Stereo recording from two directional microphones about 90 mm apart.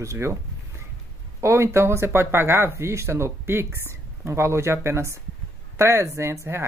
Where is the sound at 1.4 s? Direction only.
30° right (ahead or behind).